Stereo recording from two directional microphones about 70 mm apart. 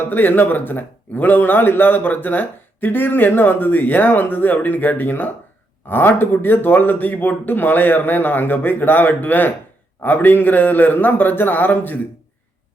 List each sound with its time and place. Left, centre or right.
0.1 s a man's voice: left